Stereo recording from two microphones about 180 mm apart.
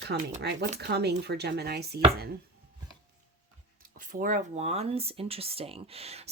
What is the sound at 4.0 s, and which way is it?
Speech, 50° right (ahead or behind).